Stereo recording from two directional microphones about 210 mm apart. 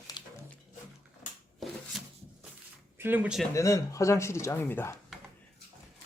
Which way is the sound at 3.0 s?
10° right (ahead or behind).